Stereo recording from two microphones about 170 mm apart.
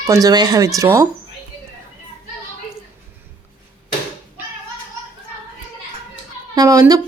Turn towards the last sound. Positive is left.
turn(degrees=-20)  # may be behind; listen again after turning